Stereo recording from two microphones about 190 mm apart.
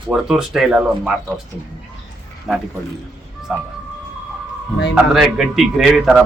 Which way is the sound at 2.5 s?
Centre (ahead or behind).